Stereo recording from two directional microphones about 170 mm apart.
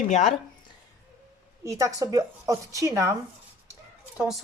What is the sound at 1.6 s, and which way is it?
A woman's voice, 20° right (ahead or behind).